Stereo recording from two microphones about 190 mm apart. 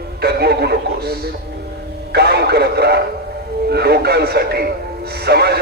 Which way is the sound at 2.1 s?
60° right (ahead or behind).